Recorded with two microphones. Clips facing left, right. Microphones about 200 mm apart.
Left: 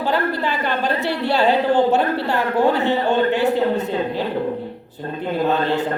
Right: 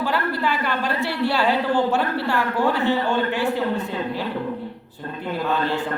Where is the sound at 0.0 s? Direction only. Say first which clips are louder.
Left 3 dB; 20° left (ahead or behind).